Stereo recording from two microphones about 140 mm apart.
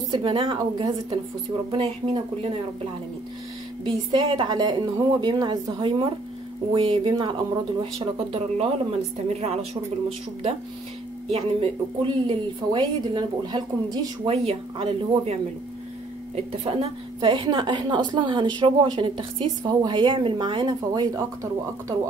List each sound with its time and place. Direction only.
0.1 s speech: 35° right (ahead or behind)
11.2 s speech: 45° right (ahead or behind)
14.3 s speech: 45° right (ahead or behind)
16.6 s speech: 40° right (ahead or behind)
19.6 s speech: 30° right (ahead or behind)